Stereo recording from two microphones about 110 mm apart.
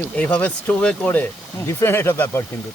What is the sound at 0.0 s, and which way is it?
Speech, 10° left (ahead or behind).